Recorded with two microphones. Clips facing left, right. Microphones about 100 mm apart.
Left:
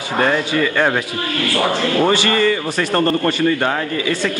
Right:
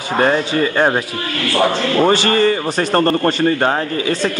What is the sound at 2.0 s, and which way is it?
Speech, 35° right (ahead or behind).